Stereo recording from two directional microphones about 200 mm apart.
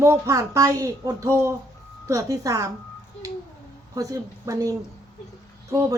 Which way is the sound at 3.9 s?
15° right (ahead or behind).